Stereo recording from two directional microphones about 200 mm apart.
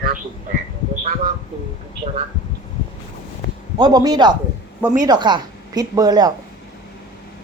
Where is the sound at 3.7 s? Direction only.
20° right (ahead or behind).